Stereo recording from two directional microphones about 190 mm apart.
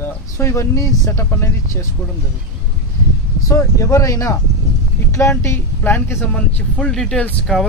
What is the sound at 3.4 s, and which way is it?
Speech, 15° left (ahead or behind).